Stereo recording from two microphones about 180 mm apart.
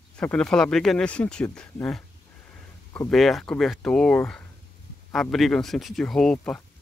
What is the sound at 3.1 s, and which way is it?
Speech, centre (ahead or behind).